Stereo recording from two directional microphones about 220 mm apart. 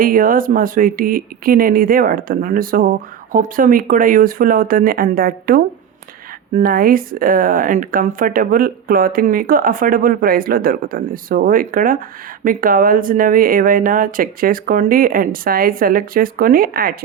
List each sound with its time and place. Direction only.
0.0 s speech: 40° right (ahead or behind)